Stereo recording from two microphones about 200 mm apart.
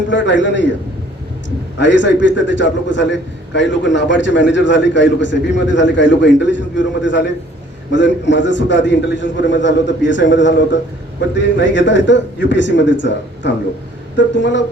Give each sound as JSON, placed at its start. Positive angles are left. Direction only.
{"t": 0.1, "sound": "a man's voice", "side_deg": 65}
{"t": 1.8, "sound": "a man's voice", "side_deg": 65}